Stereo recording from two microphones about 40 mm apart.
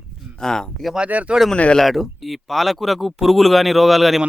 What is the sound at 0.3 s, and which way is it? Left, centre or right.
Speech, centre.